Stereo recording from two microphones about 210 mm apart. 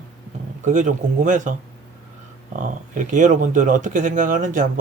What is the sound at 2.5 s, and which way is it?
Speech, 40° right (ahead or behind).